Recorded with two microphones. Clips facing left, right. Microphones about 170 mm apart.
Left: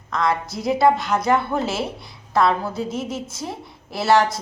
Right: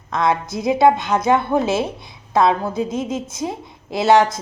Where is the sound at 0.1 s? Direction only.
20° right (ahead or behind).